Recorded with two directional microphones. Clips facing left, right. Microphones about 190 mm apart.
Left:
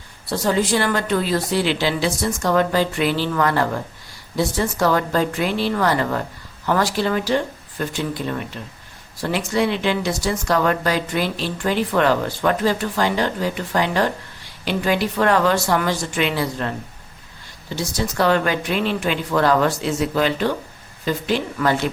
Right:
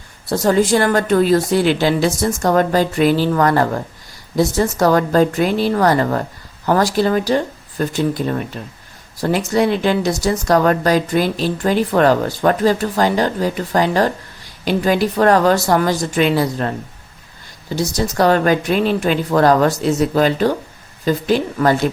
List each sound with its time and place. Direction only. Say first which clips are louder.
0.3 s speech: right 5 dB; 45° right (ahead or behind)
17.7 s speech: right 4 dB; 40° right (ahead or behind)